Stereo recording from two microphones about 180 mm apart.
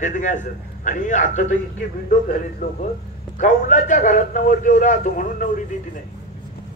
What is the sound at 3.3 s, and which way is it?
A man's voice, 45° left (ahead or behind).